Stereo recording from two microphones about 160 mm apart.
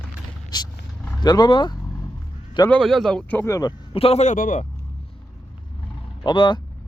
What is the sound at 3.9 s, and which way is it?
Speech, 40° left (ahead or behind).